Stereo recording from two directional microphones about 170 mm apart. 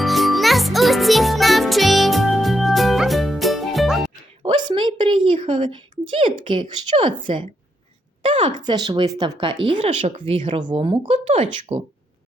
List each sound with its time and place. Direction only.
0.0 s music: centre (ahead or behind)
4.4 s a sound: 30° right (ahead or behind)
6.4 s speech: 25° right (ahead or behind)